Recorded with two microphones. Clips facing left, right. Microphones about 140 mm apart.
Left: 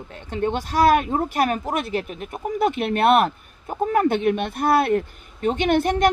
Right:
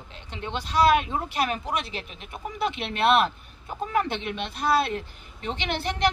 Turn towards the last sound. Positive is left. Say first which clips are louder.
# left 9 dB
turn(degrees=50)  # may be behind; listen again after turning